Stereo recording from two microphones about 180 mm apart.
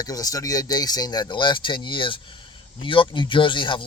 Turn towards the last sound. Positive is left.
turn(degrees=25)  # may be behind; listen again after turning